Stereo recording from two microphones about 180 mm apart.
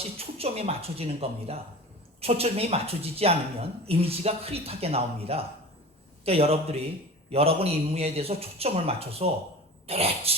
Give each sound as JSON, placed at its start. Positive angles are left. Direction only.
{"t": 0.2, "sound": "speech", "side_deg": -35}